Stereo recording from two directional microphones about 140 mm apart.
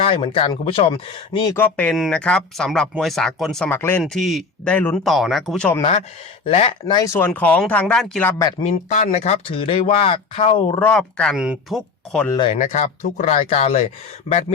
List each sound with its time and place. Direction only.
0.0 s speech: 40° left (ahead or behind)
1.5 s a man's voice: 10° left (ahead or behind)
3.7 s speech: 15° left (ahead or behind)
4.0 s a man's voice: centre (ahead or behind)
5.0 s a man's voice: centre (ahead or behind)
6.4 s speech: 45° left (ahead or behind)
6.9 s speech: 20° left (ahead or behind)
8.6 s speech: 55° left (ahead or behind); by 10.8 s 40° left (ahead or behind)
10.8 s speech: 10° left (ahead or behind)
11.3 s speech: 5° right (ahead or behind)
12.5 s speech: 55° left (ahead or behind)